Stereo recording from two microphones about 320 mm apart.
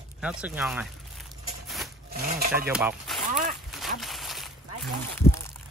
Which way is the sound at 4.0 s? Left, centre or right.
Centre.